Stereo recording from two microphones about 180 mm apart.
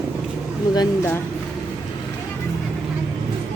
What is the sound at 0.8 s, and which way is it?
Speech, 15° left (ahead or behind).